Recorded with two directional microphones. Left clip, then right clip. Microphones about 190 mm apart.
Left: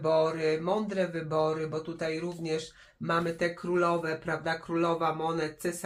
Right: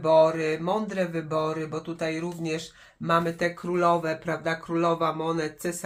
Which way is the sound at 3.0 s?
25° right (ahead or behind).